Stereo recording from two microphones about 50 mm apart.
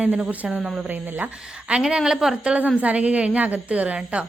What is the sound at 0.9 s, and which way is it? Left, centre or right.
Speech, right.